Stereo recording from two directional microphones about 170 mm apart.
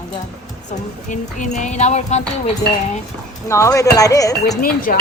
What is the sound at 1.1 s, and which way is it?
Speech, 45° left (ahead or behind).